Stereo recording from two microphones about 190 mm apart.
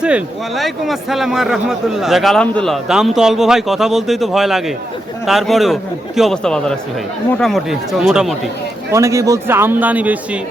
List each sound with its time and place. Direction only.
0.0 s a man's voice: 5° right (ahead or behind)
8.9 s a man's voice: 15° right (ahead or behind)